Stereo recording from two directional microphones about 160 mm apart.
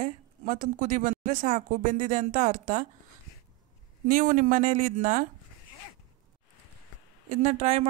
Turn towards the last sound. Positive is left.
turn(degrees=-45)  # may be behind; listen again after turning